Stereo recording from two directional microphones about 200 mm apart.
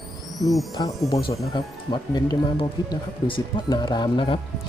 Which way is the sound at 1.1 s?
25° left (ahead or behind).